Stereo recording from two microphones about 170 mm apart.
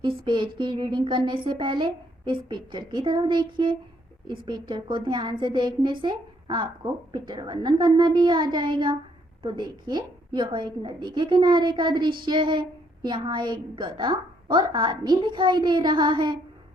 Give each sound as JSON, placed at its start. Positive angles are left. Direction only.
{"t": 0.0, "sound": "a woman's voice", "side_deg": -30}